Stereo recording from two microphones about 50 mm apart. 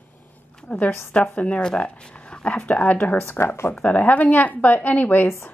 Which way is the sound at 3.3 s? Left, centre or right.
Left.